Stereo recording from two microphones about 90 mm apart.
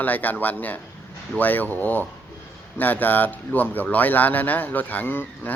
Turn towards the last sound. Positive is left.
turn(degrees=20)  # may be behind; listen again after turning